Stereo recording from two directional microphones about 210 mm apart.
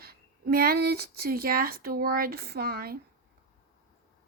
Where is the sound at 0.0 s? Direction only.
45° right (ahead or behind).